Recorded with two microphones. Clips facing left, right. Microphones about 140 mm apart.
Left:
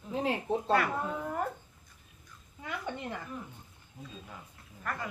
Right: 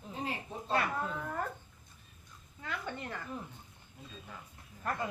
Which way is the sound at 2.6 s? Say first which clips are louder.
Left 2 dB; 15° left (ahead or behind).